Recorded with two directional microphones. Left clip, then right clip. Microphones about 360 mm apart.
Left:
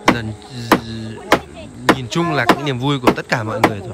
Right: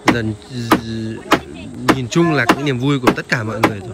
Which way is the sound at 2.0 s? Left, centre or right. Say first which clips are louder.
Right 3 dB; centre.